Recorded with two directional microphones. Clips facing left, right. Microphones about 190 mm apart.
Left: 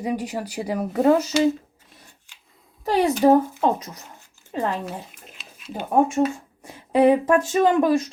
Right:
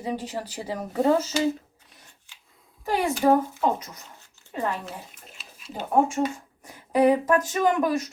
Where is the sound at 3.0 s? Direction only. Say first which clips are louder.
Left 4 dB; 40° left (ahead or behind).